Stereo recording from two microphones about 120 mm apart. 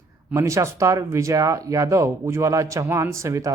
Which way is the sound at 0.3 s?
25° right (ahead or behind).